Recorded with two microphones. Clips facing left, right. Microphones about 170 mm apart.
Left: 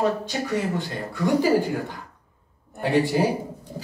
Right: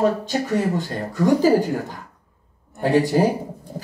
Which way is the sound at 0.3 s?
45° right (ahead or behind).